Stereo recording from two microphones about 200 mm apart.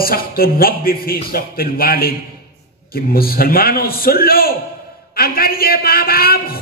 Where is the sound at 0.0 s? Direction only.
50° left (ahead or behind).